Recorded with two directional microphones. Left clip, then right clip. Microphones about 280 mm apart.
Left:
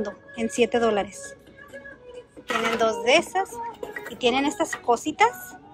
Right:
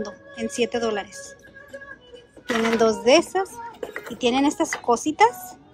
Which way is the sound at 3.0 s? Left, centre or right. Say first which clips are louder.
Right 3 dB; centre.